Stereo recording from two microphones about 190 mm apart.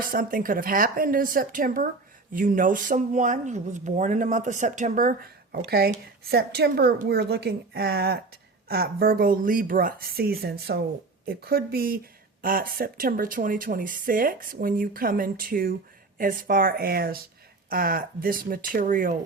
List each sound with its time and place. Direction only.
0.0 s a woman's voice: 45° right (ahead or behind)